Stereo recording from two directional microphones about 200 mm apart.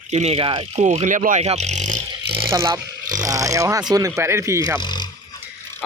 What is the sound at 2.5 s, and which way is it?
Speech, 15° right (ahead or behind).